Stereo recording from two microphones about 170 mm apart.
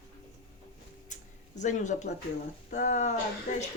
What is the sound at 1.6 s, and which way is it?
Speech, 45° left (ahead or behind).